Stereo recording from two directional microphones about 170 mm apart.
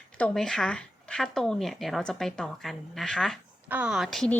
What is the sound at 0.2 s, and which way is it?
Speech, 5° left (ahead or behind).